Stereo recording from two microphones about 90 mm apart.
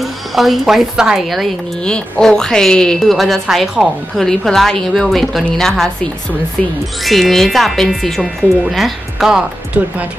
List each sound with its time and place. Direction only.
0.0 s speech: centre (ahead or behind)
1.9 s a woman's voice: 10° left (ahead or behind)
7.1 s a woman's voice: centre (ahead or behind)
9.8 s speech: 15° right (ahead or behind)